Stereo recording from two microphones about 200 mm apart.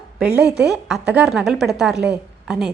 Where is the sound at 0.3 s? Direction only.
5° right (ahead or behind).